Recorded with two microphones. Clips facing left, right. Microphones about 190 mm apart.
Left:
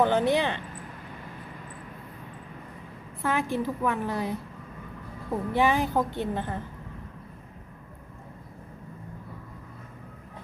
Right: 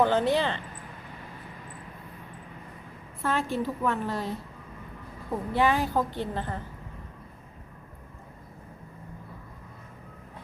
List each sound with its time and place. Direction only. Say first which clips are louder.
0.0 s a woman's voice: left 1 dB; 15° left (ahead or behind)
3.2 s a woman's voice: left 1 dB; 15° left (ahead or behind)